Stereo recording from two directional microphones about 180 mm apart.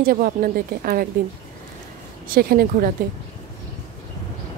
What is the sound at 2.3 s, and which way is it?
Speech, 55° right (ahead or behind).